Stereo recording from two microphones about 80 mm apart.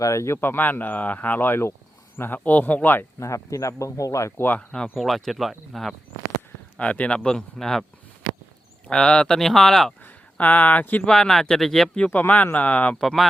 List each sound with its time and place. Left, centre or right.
0.0 s speech: left
0.3 s speech: left
3.2 s speech: left
4.4 s speech: left
4.7 s speech: centre
6.7 s speech: centre
8.9 s speech: centre
10.0 s speech: left
13.0 s speech: centre